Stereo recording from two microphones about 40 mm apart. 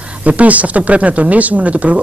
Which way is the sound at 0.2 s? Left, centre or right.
Right.